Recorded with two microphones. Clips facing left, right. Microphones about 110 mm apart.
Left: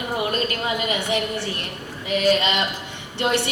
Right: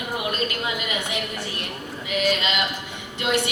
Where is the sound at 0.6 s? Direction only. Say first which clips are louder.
Left 4 dB; 30° left (ahead or behind).